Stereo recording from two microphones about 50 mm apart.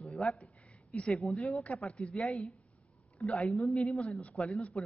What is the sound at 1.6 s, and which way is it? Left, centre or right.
Speech, left.